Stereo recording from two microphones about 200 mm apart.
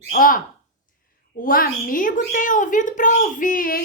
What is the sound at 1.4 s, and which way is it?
A woman's voice, 45° left (ahead or behind).